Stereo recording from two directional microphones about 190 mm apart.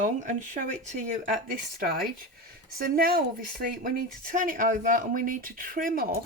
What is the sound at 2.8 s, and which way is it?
Speech, 50° right (ahead or behind).